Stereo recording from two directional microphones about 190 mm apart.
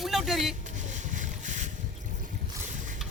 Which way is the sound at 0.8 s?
40° right (ahead or behind).